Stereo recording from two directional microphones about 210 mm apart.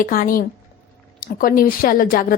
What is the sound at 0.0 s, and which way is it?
A woman's voice, 40° left (ahead or behind).